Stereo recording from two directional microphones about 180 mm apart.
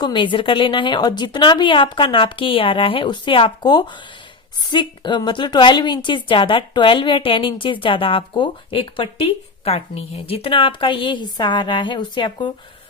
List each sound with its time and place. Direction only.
0.0 s a woman's voice: 25° left (ahead or behind)